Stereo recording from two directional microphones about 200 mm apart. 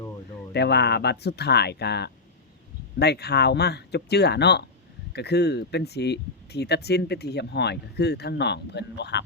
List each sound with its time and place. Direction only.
0.5 s speech: 55° left (ahead or behind)